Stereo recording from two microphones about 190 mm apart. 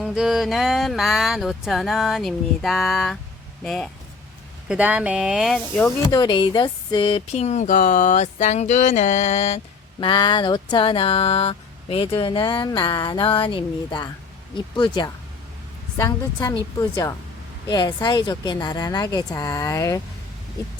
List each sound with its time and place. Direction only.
0.0 s speech: 5° right (ahead or behind)
6.1 s a woman's voice: 25° left (ahead or behind)